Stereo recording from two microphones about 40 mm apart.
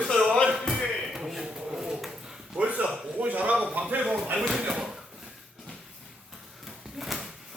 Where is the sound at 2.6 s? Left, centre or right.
Right.